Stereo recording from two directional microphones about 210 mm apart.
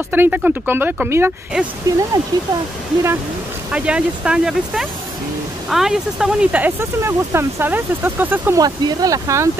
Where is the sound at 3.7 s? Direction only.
5° right (ahead or behind).